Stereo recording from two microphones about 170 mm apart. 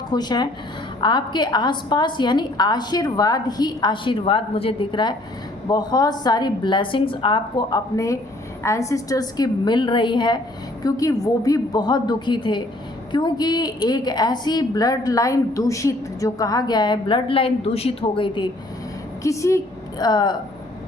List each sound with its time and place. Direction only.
0.1 s a woman's voice: 25° left (ahead or behind)
19.2 s a woman's voice: 20° left (ahead or behind)